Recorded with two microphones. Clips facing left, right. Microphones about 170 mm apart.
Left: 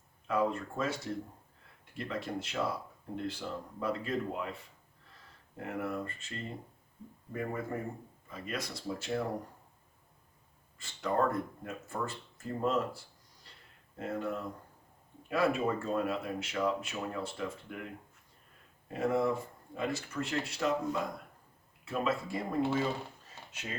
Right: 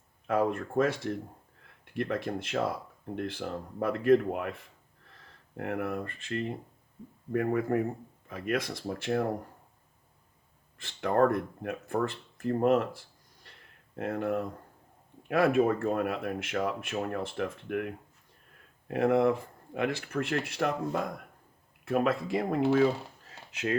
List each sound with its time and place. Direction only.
0.3 s speech: 55° right (ahead or behind)
5.5 s speech: 60° right (ahead or behind)
11.0 s speech: 65° right (ahead or behind)
14.0 s speech: 55° right (ahead or behind)
23.3 s a sound: 70° right (ahead or behind)